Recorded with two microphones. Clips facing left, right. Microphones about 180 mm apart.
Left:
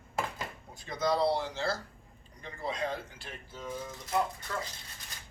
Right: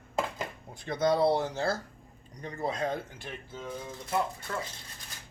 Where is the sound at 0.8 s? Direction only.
60° right (ahead or behind).